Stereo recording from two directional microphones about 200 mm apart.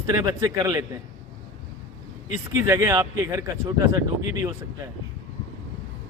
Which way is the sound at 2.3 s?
15° right (ahead or behind).